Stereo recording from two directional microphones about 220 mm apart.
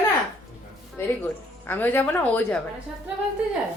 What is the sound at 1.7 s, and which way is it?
Speech, 10° left (ahead or behind).